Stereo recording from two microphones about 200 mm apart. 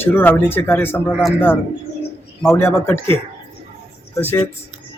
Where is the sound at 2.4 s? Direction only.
10° left (ahead or behind).